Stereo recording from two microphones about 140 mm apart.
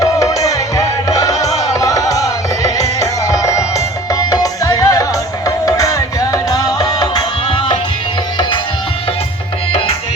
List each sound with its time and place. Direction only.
0.0 s music: 25° left (ahead or behind)